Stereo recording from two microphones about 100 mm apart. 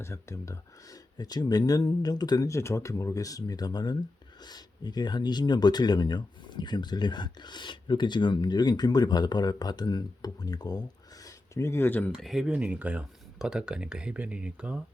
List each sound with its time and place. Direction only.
0.0 s speech: 30° left (ahead or behind)
2.5 s speech: 30° left (ahead or behind)
12.1 s speech: 5° right (ahead or behind)